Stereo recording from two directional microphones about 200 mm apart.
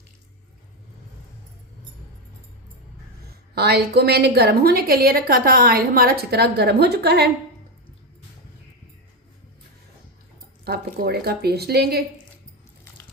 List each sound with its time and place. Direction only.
3.5 s a woman's voice: 55° right (ahead or behind)
10.6 s a woman's voice: 55° right (ahead or behind)